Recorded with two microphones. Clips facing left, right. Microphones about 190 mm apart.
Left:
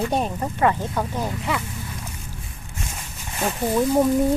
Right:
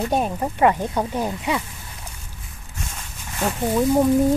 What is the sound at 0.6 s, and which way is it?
Speech, 15° right (ahead or behind).